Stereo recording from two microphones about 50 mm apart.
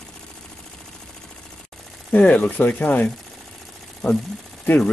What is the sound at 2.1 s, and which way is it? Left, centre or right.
Speech, left.